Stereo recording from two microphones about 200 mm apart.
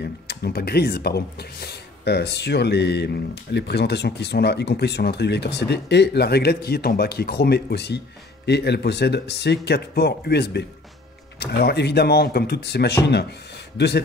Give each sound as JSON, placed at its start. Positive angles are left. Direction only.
{"t": 0.0, "sound": "speech", "side_deg": 55}